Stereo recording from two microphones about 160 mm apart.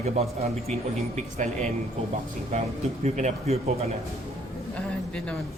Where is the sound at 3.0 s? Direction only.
45° right (ahead or behind).